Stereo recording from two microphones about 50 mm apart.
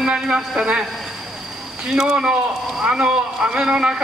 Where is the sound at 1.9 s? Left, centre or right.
Centre.